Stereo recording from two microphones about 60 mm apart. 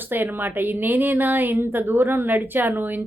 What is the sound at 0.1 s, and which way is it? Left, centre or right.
Speech, right.